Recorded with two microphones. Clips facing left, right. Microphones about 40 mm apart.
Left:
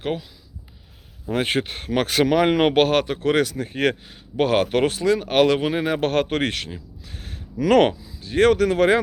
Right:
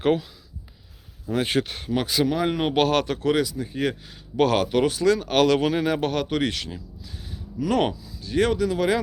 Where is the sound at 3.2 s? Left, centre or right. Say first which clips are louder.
Left 2 dB; left.